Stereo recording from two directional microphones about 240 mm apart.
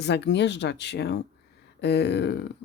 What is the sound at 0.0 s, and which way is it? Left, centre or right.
Speech, left.